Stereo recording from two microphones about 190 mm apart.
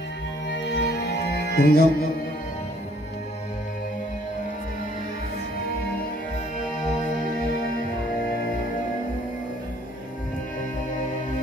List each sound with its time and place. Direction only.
0.5 s music: 70° left (ahead or behind)
6.8 s music: 40° left (ahead or behind)